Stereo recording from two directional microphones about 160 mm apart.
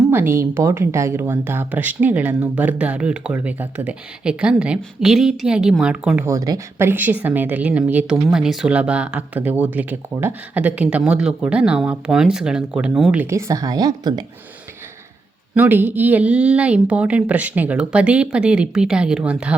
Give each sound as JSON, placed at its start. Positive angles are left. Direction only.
{"t": 0.1, "sound": "a woman's voice", "side_deg": -15}
{"t": 6.2, "sound": "a woman's voice", "side_deg": -20}
{"t": 13.3, "sound": "a woman's voice", "side_deg": -20}
{"t": 15.5, "sound": "a woman's voice", "side_deg": -10}